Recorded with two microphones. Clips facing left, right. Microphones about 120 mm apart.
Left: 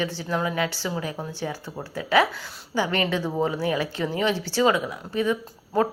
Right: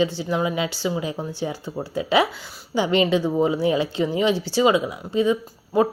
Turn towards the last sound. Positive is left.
turn(degrees=-15)  # may be behind; listen again after turning